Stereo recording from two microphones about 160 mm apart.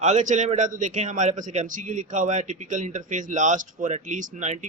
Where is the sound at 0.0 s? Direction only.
50° right (ahead or behind).